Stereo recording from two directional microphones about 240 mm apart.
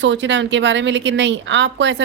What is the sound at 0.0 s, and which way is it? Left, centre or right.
Speech, right.